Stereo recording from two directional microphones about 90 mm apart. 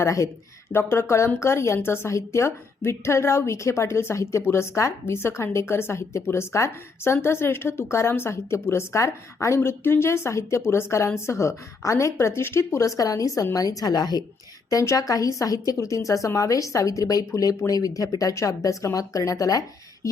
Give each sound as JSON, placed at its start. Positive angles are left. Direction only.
{"t": 0.0, "sound": "a woman's voice", "side_deg": 35}
{"t": 14.7, "sound": "a woman's voice", "side_deg": 40}